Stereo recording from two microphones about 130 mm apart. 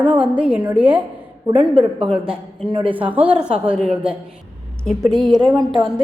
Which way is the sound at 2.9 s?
10° right (ahead or behind).